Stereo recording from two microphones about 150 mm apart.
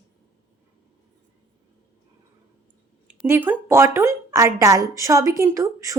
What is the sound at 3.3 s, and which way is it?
A woman's voice, 10° right (ahead or behind).